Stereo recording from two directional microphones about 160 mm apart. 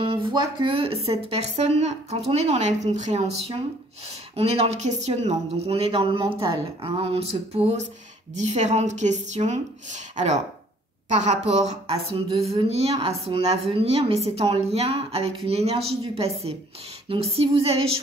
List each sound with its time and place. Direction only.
0.0 s speech: 30° right (ahead or behind)
6.8 s a woman's voice: 35° right (ahead or behind)